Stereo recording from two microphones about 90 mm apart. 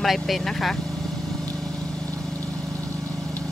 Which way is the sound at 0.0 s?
Centre (ahead or behind).